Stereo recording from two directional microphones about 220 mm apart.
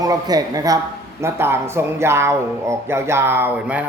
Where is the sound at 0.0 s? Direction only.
15° right (ahead or behind).